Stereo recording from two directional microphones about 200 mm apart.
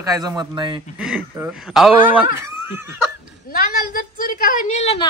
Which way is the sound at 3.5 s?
45° left (ahead or behind).